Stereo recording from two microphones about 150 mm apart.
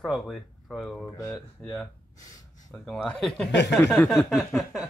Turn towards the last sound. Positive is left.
turn(degrees=0)  # may be behind; listen again after turning